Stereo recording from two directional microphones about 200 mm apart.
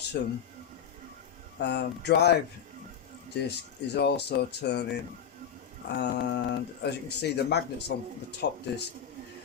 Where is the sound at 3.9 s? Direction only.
55° left (ahead or behind).